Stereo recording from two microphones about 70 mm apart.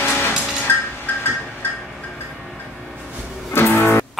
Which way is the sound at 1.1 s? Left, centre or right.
Left.